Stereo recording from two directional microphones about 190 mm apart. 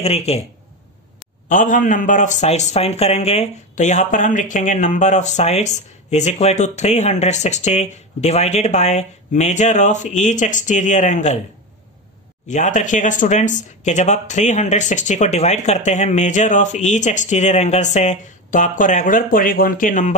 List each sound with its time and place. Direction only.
0.0 s a man's voice: 35° left (ahead or behind)
1.5 s a man's voice: 45° left (ahead or behind)
12.4 s a man's voice: 40° left (ahead or behind)